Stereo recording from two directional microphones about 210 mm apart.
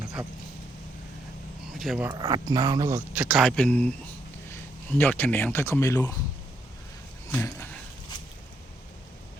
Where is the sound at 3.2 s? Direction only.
Centre (ahead or behind); by 6.1 s 15° left (ahead or behind).